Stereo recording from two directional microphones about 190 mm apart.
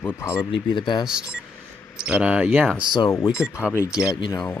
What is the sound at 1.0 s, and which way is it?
Speech, 5° right (ahead or behind).